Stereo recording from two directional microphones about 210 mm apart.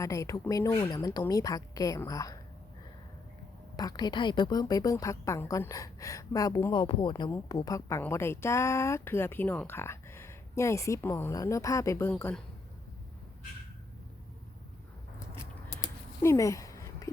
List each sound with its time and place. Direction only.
0.0 s a woman's voice: 15° left (ahead or behind)
3.8 s a woman's voice: 20° left (ahead or behind)
15.7 s a sound: 15° left (ahead or behind)